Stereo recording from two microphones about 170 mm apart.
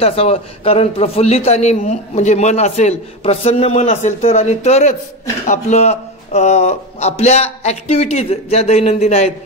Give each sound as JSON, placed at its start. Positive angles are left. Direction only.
{"t": 0.0, "sound": "a man's voice", "side_deg": 35}